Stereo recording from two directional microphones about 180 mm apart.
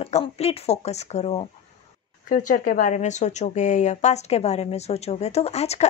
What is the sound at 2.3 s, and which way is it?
Speech, 50° left (ahead or behind).